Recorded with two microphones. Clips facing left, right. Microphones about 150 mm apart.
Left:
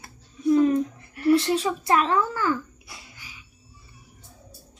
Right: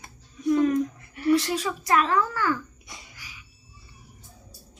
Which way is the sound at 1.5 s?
30° left (ahead or behind).